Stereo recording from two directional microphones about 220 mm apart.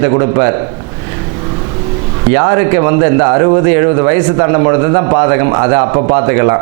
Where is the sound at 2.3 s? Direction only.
20° right (ahead or behind).